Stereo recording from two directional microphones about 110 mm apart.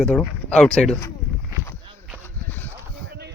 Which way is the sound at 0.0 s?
10° left (ahead or behind).